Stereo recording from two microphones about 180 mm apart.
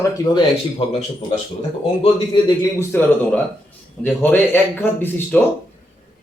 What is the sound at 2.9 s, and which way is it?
Speech, 10° left (ahead or behind).